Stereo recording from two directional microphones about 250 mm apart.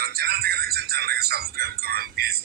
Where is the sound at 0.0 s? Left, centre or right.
Right.